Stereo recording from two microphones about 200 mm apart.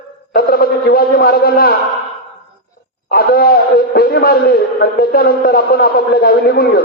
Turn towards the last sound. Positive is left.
turn(degrees=50)  # may be behind; listen again after turning